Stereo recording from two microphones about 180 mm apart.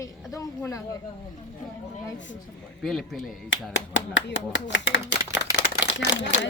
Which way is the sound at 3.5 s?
90° left.